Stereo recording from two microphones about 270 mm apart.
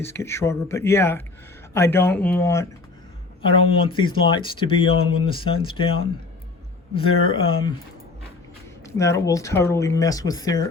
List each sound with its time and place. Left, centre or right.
0.0 s speech: centre
9.0 s speech: centre